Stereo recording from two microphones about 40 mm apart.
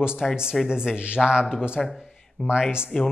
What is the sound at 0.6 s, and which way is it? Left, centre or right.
Speech, centre.